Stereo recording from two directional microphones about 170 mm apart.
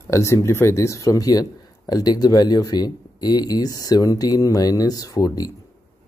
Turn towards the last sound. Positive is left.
turn(degrees=20)  # may be behind; listen again after turning